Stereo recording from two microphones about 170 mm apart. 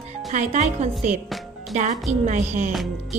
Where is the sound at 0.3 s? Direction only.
45° right (ahead or behind).